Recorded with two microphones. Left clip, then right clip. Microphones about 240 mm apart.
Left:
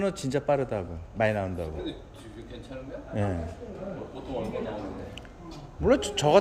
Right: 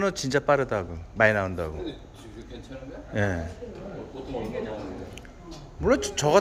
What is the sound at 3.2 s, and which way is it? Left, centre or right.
Speech, centre.